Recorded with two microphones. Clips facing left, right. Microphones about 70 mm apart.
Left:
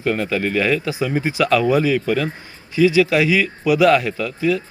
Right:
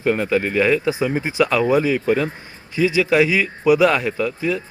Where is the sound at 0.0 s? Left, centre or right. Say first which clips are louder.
Right 2 dB; centre.